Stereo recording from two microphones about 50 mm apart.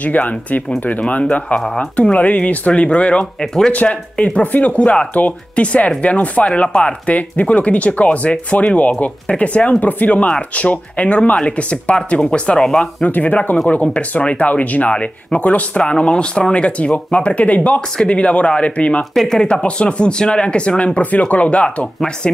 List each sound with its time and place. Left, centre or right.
0.0 s speech: left
1.5 s speech: centre
2.0 s speech: left
3.3 s speech: centre
3.7 s speech: left
19.1 s speech: centre
19.4 s speech: left